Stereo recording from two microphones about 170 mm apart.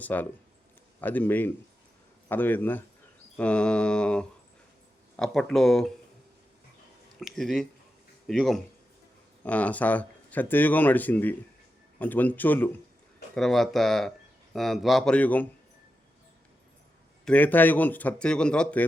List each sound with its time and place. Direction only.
0.0 s speech: 10° left (ahead or behind)
7.2 s speech: centre (ahead or behind)
17.2 s speech: 10° left (ahead or behind)